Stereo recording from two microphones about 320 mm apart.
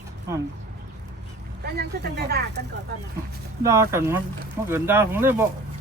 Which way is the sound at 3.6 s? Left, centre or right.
Centre.